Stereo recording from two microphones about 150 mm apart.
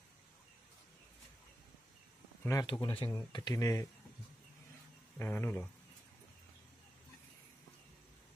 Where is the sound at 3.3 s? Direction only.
25° left (ahead or behind).